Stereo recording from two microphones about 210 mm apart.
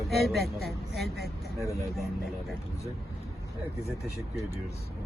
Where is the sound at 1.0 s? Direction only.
50° right (ahead or behind).